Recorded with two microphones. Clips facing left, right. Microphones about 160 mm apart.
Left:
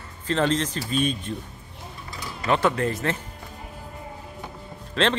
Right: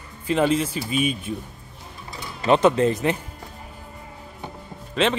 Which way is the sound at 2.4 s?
20° right (ahead or behind).